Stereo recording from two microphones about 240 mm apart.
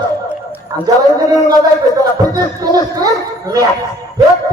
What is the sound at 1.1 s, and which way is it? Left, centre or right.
Speech, centre.